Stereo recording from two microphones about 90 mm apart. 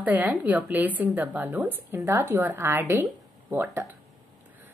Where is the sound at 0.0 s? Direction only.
15° right (ahead or behind).